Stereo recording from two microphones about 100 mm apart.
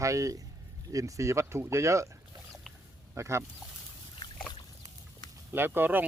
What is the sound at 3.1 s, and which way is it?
Speech, 30° right (ahead or behind).